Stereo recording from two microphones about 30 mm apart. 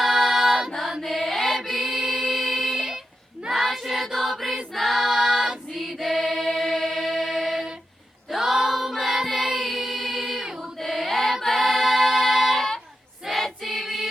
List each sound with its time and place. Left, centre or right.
0.1 s music: centre
1.0 s chant: centre
1.8 s music: centre
2.5 s a sound: right
3.5 s choir: centre
6.4 s choir: centre
7.0 s choir: centre
7.3 s a sound: centre
8.4 s singing: centre
9.2 s music: centre
9.5 s music: centre
9.7 s choir: centre
11.5 s singing: centre
13.2 s choir: centre